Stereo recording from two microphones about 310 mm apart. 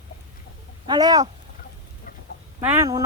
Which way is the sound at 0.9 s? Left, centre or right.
Centre.